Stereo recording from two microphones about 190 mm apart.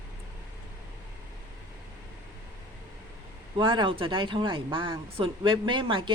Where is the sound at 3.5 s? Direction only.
25° right (ahead or behind).